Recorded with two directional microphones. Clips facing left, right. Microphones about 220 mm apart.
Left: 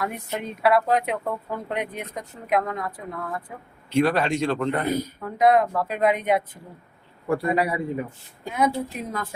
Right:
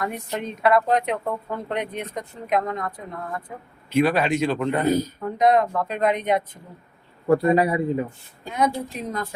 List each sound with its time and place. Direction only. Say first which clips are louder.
0.0 s speech: right 1 dB; 5° left (ahead or behind)
4.7 s a man's voice: right 4 dB; 25° right (ahead or behind)
5.4 s speech: even; 5° left (ahead or behind)
7.3 s a man's voice: right 5 dB; 25° right (ahead or behind)
8.5 s speech: even; 5° left (ahead or behind)